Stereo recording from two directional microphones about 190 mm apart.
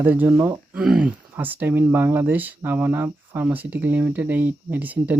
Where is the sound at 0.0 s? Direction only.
10° right (ahead or behind).